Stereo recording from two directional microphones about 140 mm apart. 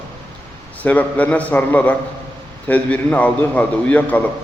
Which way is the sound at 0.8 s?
10° left (ahead or behind).